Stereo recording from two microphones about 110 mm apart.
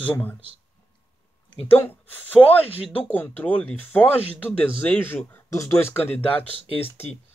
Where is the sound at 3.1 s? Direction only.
15° left (ahead or behind).